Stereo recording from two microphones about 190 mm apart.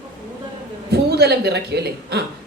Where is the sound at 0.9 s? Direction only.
60° right (ahead or behind).